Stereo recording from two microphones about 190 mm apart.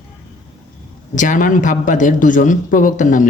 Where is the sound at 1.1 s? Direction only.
40° left (ahead or behind).